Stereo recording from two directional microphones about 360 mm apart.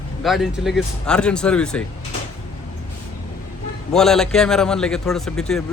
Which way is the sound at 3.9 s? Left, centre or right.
Centre.